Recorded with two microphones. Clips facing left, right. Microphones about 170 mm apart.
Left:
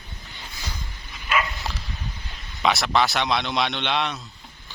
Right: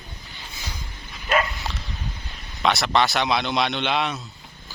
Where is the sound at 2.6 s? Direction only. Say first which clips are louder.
Right 1 dB; centre (ahead or behind).